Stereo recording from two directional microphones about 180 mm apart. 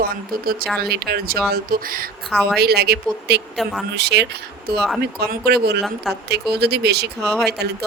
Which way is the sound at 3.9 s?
70° right (ahead or behind).